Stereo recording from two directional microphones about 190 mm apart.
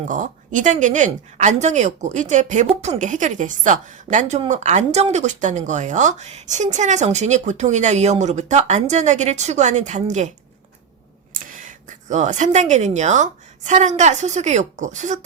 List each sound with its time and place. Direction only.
0.1 s speech: 40° right (ahead or behind)
11.4 s speech: 45° right (ahead or behind)